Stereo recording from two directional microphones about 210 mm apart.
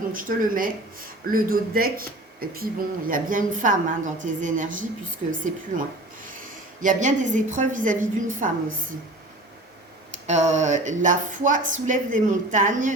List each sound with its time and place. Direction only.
0.1 s speech: 40° right (ahead or behind)
6.8 s speech: 35° right (ahead or behind)
10.2 s speech: 35° right (ahead or behind)